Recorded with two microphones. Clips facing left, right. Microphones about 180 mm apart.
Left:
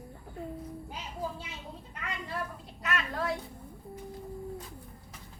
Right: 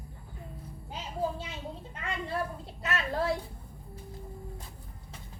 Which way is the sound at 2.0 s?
30° right (ahead or behind).